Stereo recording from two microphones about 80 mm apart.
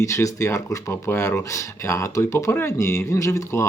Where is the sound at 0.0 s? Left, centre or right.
Left.